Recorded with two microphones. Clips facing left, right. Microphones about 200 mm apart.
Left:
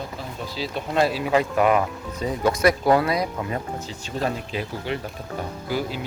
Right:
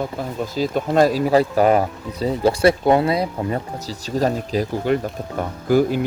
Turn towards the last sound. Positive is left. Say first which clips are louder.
# right 10 dB
turn(degrees=-50)  # may be behind; listen again after turning